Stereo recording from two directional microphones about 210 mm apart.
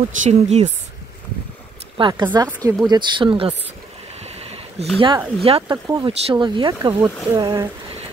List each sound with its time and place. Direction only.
0.2 s speech: 30° right (ahead or behind)
2.0 s speech: 20° right (ahead or behind)
4.2 s a sound: 30° right (ahead or behind)
4.9 s speech: 20° right (ahead or behind)